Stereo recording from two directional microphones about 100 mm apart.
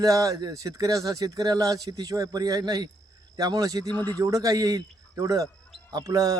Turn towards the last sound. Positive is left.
turn(degrees=-35)  # may be behind; listen again after turning